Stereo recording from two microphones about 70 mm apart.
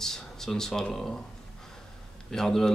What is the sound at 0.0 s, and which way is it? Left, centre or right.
Speech, centre.